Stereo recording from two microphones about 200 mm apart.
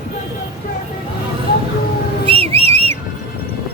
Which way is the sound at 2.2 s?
30° right (ahead or behind).